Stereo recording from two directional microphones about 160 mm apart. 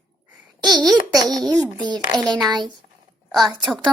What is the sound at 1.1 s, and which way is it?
A woman's voice, 25° right (ahead or behind).